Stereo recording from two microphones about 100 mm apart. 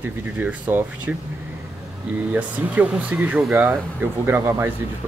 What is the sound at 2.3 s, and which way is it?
Speech, 15° right (ahead or behind).